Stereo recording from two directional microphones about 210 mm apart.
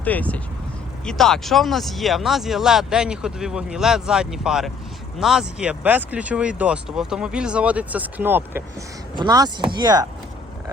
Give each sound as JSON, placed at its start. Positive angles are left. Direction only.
{"t": 0.0, "sound": "speech", "side_deg": 5}